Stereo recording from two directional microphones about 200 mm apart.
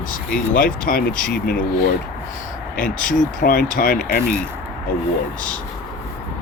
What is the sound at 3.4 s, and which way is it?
Speech, 45° left (ahead or behind).